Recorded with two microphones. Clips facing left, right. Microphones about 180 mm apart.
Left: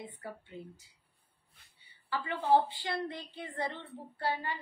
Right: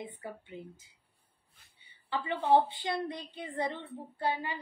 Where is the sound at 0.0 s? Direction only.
20° right (ahead or behind).